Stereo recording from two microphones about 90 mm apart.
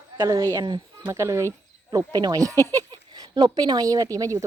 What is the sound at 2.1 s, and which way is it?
Speech, 50° right (ahead or behind).